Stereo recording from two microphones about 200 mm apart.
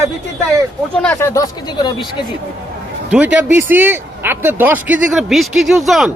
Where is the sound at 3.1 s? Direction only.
5° right (ahead or behind).